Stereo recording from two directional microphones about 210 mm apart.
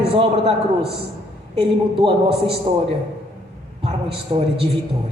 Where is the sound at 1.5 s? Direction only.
25° right (ahead or behind).